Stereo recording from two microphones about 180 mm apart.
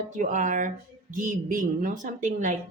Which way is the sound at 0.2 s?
45° right (ahead or behind).